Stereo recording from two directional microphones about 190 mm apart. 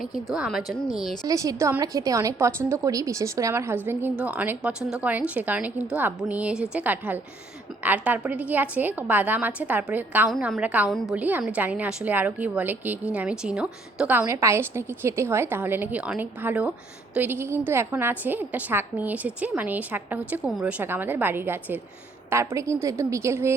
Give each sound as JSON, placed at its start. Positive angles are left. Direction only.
{"t": 0.0, "sound": "a woman's voice", "side_deg": -5}
{"t": 1.3, "sound": "a woman's voice", "side_deg": -15}